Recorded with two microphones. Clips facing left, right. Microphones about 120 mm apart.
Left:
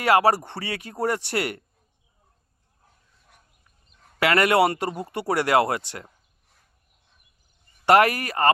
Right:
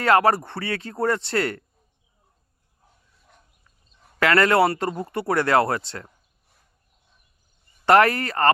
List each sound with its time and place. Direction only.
0.0 s speech: 15° left (ahead or behind)
4.2 s speech: 15° left (ahead or behind)
7.9 s speech: 15° left (ahead or behind)